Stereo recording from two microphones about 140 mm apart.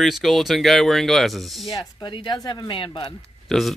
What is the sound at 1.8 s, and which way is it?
Speech, 30° left (ahead or behind).